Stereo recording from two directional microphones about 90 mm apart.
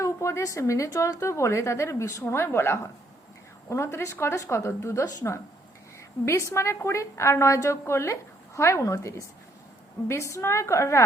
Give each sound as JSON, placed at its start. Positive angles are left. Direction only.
{"t": 0.0, "sound": "a woman's voice", "side_deg": 35}
{"t": 6.5, "sound": "a woman's voice", "side_deg": 30}